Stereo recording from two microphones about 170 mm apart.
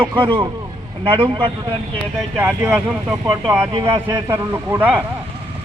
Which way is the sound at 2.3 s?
10° right (ahead or behind).